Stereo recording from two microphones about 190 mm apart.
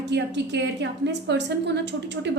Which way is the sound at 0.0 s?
65° right (ahead or behind).